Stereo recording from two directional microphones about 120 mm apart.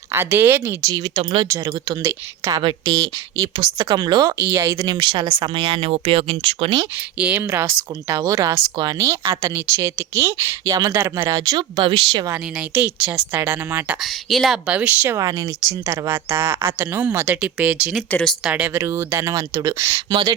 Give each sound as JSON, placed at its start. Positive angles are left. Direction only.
{"t": 0.1, "sound": "speech", "side_deg": -20}
{"t": 1.5, "sound": "speech", "side_deg": -30}
{"t": 2.6, "sound": "speech", "side_deg": -40}
{"t": 7.2, "sound": "speech", "side_deg": -10}
{"t": 11.3, "sound": "speech", "side_deg": -35}
{"t": 12.3, "sound": "speech", "side_deg": -15}
{"t": 14.0, "sound": "speech", "side_deg": 0}
{"t": 15.2, "sound": "speech", "side_deg": -30}
{"t": 15.9, "sound": "speech", "side_deg": -20}
{"t": 18.1, "sound": "speech", "side_deg": 5}
{"t": 18.4, "sound": "speech", "side_deg": -10}
{"t": 18.8, "sound": "speech", "side_deg": -20}